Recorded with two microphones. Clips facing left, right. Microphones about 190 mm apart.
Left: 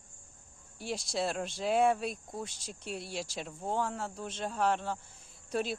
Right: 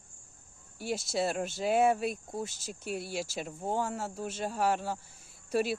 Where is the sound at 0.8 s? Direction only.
5° right (ahead or behind).